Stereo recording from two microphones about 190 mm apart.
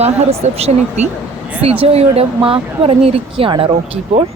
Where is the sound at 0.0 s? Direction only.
35° right (ahead or behind).